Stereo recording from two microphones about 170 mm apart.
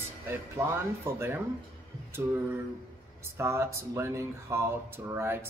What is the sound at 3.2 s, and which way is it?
Speech, 15° right (ahead or behind).